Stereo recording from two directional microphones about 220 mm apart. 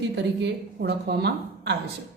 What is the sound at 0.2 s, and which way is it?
A woman's voice, 50° right (ahead or behind).